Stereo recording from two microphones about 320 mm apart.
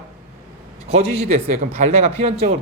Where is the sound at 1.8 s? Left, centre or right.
Centre.